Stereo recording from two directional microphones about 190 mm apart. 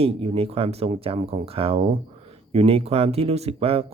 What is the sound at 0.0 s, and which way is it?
Speech, 30° right (ahead or behind).